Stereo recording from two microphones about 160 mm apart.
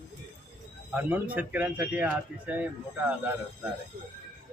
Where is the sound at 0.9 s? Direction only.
10° right (ahead or behind).